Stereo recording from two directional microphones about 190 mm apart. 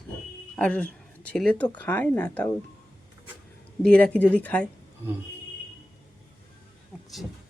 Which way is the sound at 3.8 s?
5° left (ahead or behind).